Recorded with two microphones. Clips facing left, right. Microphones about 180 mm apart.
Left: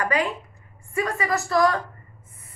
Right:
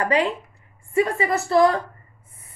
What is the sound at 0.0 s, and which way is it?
A woman's voice, 30° right (ahead or behind).